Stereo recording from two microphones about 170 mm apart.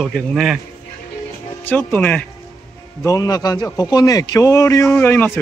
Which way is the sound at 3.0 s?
20° left (ahead or behind).